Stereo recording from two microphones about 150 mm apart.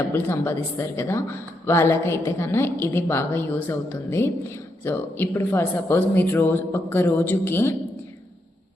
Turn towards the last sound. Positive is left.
turn(degrees=15)  # may be behind; listen again after turning